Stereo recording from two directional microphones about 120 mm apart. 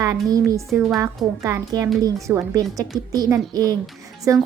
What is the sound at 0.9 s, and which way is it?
A woman's voice, 25° right (ahead or behind).